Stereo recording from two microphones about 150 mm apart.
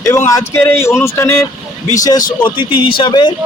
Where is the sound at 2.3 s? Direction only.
35° left (ahead or behind).